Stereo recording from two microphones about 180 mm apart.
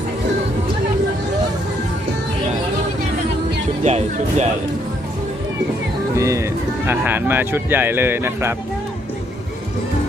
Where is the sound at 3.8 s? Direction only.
40° right (ahead or behind).